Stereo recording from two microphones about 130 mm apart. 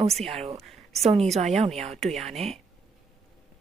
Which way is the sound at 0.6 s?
Centre (ahead or behind).